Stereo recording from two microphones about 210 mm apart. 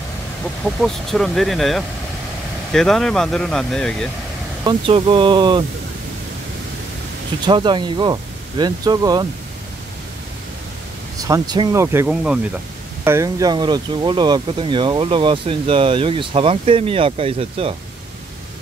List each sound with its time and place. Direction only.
0.8 s speech: centre (ahead or behind)
4.6 s speech: 25° right (ahead or behind)
7.4 s speech: 20° right (ahead or behind)
11.1 s speech: 15° right (ahead or behind)